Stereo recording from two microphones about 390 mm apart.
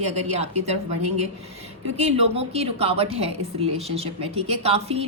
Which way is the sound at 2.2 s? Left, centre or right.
Centre.